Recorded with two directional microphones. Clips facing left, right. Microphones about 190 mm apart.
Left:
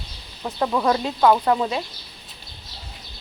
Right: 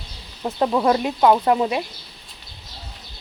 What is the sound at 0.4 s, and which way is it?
Speech, 20° right (ahead or behind).